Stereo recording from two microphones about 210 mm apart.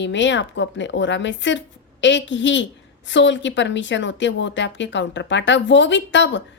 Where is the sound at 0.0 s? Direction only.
60° left (ahead or behind).